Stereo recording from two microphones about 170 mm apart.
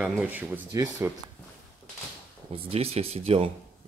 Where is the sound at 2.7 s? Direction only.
35° right (ahead or behind).